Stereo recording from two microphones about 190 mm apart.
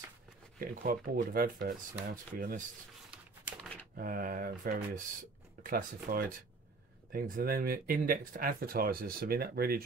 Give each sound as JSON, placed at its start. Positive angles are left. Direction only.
{"t": 0.6, "sound": "speech", "side_deg": -50}
{"t": 3.9, "sound": "speech", "side_deg": -50}